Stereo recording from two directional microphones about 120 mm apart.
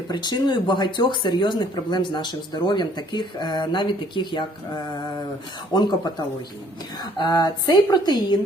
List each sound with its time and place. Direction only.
0.1 s speech: 40° left (ahead or behind)
5.7 s speech: 35° left (ahead or behind)